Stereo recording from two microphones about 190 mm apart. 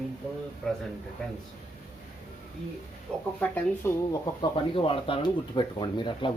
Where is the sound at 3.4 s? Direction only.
10° left (ahead or behind).